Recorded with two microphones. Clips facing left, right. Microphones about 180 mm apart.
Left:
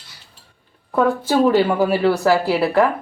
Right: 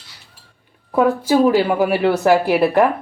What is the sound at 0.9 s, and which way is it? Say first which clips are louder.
Speech: right 2 dB; 10° right (ahead or behind).